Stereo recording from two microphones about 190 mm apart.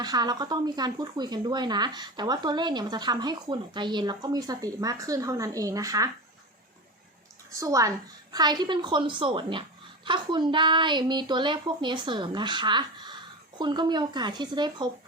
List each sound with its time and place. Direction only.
0.0 s speech: 20° right (ahead or behind)
7.5 s speech: 15° right (ahead or behind)